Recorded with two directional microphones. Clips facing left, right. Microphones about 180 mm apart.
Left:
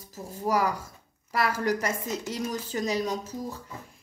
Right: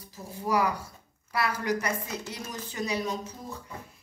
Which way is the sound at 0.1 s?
45° left (ahead or behind).